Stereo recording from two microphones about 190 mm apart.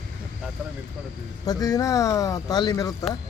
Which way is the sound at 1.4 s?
20° left (ahead or behind).